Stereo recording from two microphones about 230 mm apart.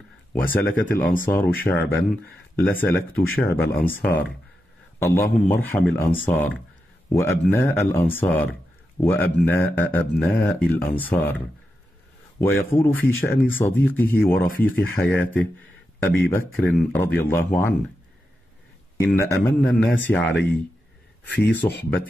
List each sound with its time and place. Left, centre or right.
0.6 s speech: centre
14.5 s speech: left
14.8 s speech: centre
18.9 s speech: centre
21.3 s speech: left